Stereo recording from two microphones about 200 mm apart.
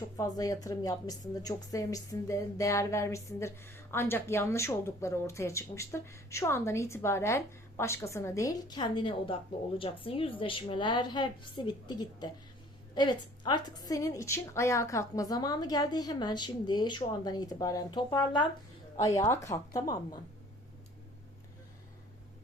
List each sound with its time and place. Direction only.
0.2 s a woman's voice: 15° left (ahead or behind)